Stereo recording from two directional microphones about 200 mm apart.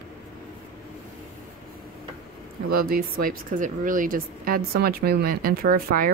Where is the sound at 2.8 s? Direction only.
45° right (ahead or behind).